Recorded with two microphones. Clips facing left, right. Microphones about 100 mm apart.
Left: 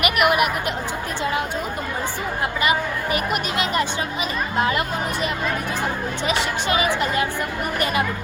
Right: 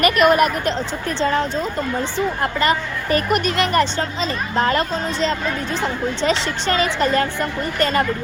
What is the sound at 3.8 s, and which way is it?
Speech, 15° left (ahead or behind).